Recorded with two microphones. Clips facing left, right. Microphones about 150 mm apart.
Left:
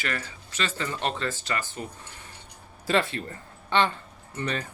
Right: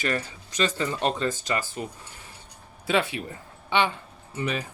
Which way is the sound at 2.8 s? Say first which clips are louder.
Even; centre (ahead or behind).